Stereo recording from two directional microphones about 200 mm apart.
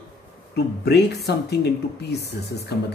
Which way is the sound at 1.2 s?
55° left (ahead or behind).